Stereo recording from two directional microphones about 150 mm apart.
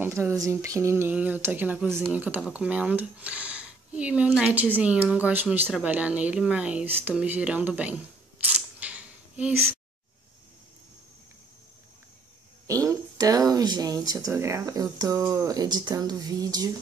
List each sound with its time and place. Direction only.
0.0 s speech: 15° right (ahead or behind)
12.6 s speech: 20° right (ahead or behind)